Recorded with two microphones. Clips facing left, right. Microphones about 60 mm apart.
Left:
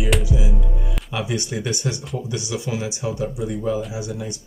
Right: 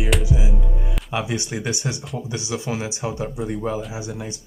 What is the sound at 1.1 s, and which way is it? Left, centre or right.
Speech, right.